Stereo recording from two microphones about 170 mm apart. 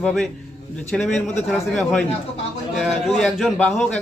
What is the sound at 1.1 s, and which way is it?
Speech, 45° left (ahead or behind).